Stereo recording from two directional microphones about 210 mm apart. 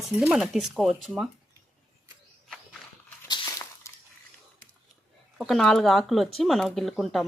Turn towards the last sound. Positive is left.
turn(degrees=0)  # may be behind; listen again after turning